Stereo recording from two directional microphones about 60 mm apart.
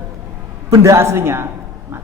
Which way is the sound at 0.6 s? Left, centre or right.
Right.